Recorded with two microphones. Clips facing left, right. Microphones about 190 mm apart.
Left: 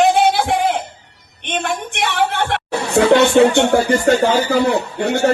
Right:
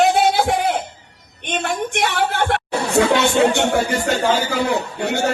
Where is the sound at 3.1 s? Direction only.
55° left (ahead or behind).